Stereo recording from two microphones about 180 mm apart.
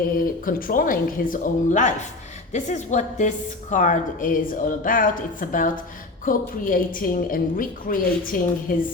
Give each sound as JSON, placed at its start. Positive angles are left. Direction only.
{"t": 0.4, "sound": "a woman's voice", "side_deg": 50}